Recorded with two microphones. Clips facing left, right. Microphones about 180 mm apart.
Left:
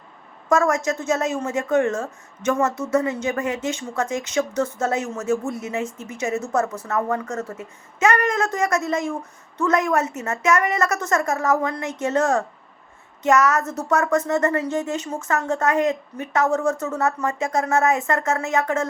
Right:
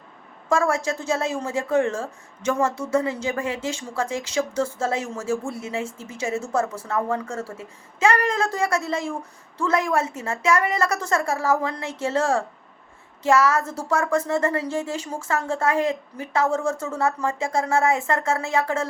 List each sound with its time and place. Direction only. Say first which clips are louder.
0.7 s a woman's voice: left 2 dB; 30° right (ahead or behind)